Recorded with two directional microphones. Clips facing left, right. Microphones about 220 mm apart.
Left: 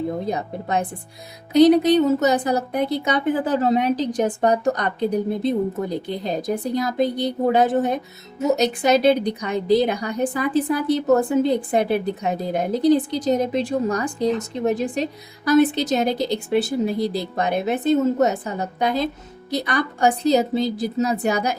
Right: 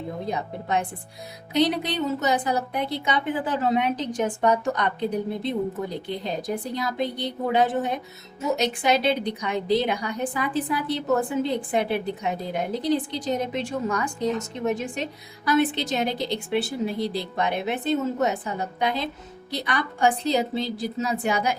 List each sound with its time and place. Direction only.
0.3 s a woman's voice: 40° left (ahead or behind)